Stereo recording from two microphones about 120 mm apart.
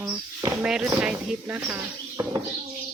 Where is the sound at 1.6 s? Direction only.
25° right (ahead or behind).